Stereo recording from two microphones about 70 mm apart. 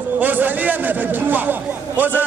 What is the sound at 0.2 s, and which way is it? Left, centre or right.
A man's voice, right.